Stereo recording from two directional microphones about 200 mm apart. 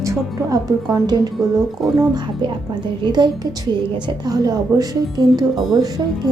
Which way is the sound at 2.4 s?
25° right (ahead or behind).